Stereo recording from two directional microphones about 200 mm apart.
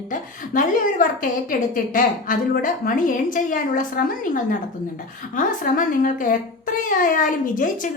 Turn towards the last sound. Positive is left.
turn(degrees=40)  # may be behind; listen again after turning